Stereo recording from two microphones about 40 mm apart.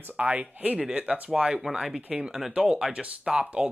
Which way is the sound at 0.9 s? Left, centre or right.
Right.